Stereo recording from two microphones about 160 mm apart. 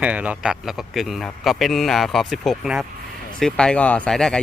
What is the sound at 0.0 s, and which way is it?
A man's voice, 10° right (ahead or behind).